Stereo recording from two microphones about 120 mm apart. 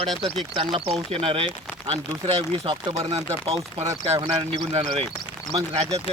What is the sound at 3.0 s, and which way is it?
Speech, 60° right (ahead or behind).